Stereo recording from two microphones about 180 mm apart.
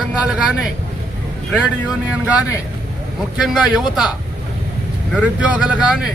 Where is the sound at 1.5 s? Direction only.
5° right (ahead or behind).